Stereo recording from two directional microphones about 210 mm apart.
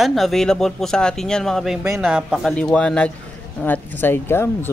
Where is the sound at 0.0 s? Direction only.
Centre (ahead or behind).